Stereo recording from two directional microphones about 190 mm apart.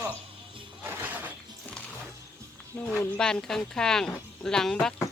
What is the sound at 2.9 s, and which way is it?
Speech, 5° left (ahead or behind).